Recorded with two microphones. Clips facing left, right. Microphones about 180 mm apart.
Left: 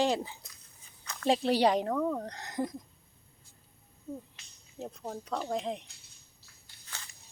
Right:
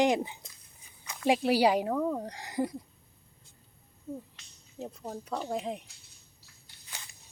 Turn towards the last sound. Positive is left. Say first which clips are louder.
# even
turn(degrees=-15)  # may be behind; listen again after turning